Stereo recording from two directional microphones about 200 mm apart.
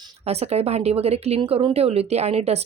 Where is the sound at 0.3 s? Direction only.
30° right (ahead or behind).